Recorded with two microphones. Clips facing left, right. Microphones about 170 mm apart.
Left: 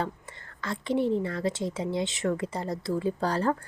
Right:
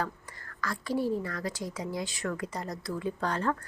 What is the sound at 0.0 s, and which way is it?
A woman's voice, 25° left (ahead or behind).